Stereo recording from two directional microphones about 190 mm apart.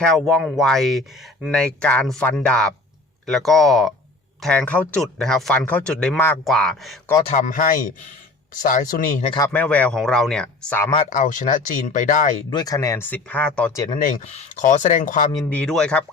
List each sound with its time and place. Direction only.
0.0 s speech: centre (ahead or behind)
7.2 s speech: 35° left (ahead or behind)
9.5 s speech: 5° left (ahead or behind)
11.1 s speech: 40° left (ahead or behind)
12.5 s speech: 20° left (ahead or behind)
14.5 s speech: 40° left (ahead or behind)
15.4 s speech: 5° left (ahead or behind)